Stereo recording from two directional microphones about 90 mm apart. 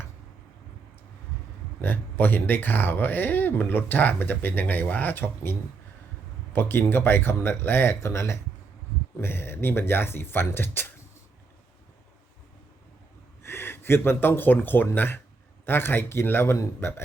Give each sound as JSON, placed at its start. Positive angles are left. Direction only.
{"t": 1.8, "sound": "speech", "side_deg": 20}
{"t": 13.4, "sound": "speech", "side_deg": 25}